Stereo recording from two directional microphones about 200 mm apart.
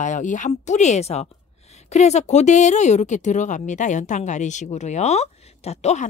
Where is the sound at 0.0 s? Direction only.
40° left (ahead or behind).